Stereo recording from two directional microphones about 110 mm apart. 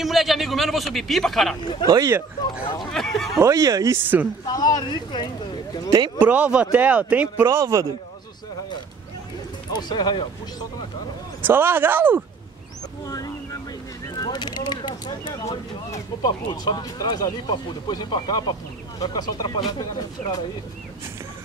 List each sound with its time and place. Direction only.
0.0 s a man's voice: centre (ahead or behind)
1.9 s speech: 35° right (ahead or behind)
2.8 s speech: 5° left (ahead or behind)
3.3 s speech: 30° right (ahead or behind)
4.5 s speech: 35° left (ahead or behind)
6.1 s speech: 15° right (ahead or behind)
7.4 s speech: 25° right (ahead or behind)
9.7 s speech: 40° left (ahead or behind)
11.4 s speech: 20° right (ahead or behind)
13.0 s a sound: 35° left (ahead or behind)
14.0 s speech: 35° left (ahead or behind)